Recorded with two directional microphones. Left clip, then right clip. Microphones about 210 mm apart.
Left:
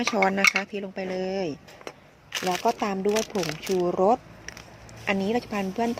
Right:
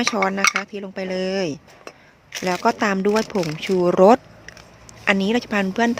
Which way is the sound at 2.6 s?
25° right (ahead or behind).